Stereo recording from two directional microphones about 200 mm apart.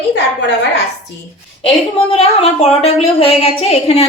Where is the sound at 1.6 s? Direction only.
30° left (ahead or behind).